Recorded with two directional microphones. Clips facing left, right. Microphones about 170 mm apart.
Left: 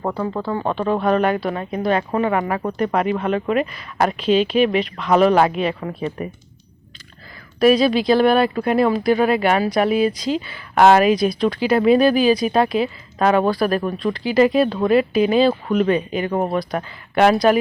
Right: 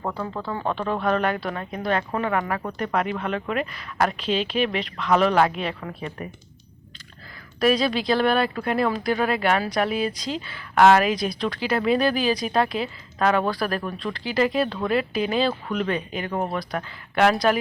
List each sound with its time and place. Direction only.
0.6 s speech: 15° left (ahead or behind)
7.6 s speech: 10° left (ahead or behind)